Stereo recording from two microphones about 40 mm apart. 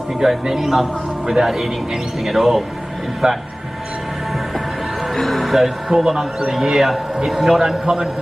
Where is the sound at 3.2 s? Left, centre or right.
Centre.